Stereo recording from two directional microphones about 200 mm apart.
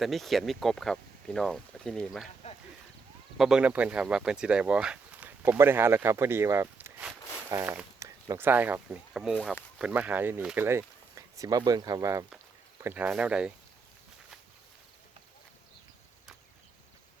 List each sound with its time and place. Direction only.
0.0 s speech: centre (ahead or behind)
2.4 s a sound: 30° left (ahead or behind)
3.3 s speech: centre (ahead or behind)